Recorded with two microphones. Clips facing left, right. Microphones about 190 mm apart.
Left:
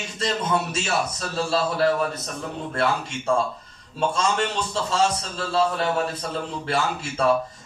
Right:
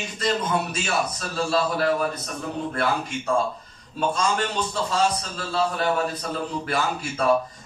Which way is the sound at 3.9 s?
25° left (ahead or behind).